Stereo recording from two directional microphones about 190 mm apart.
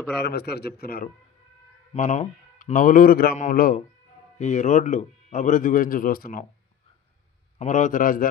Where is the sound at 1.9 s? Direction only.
40° left (ahead or behind).